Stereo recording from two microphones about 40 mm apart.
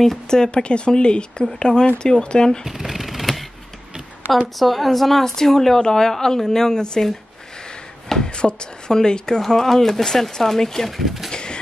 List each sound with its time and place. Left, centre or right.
0.3 s speech: centre
2.6 s shuffling cards: centre
4.6 s a woman's voice: centre
8.1 s speech: left
9.4 s speech: centre
11.3 s a sound: left